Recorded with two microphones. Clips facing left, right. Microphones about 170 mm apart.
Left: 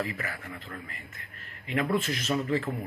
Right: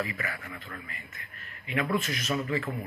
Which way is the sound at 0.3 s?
35° left (ahead or behind).